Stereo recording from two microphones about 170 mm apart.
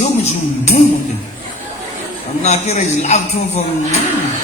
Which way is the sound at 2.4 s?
40° left (ahead or behind).